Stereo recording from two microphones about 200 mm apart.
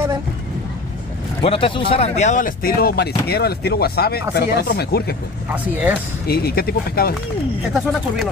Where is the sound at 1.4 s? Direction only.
25° left (ahead or behind); by 5.2 s 50° left (ahead or behind).